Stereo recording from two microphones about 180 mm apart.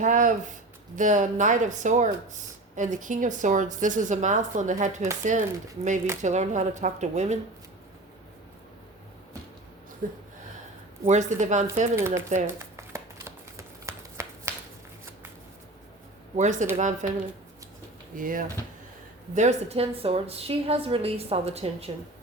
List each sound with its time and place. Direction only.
0.0 s a woman's voice: 45° right (ahead or behind)
11.0 s a woman's voice: 40° right (ahead or behind)
11.9 s speech: 15° right (ahead or behind)
12.7 s shuffling cards: 15° right (ahead or behind)
16.3 s a woman's voice: 40° right (ahead or behind)
18.2 s a woman's voice: 50° right (ahead or behind)